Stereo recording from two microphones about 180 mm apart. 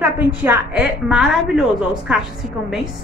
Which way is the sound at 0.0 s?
10° right (ahead or behind).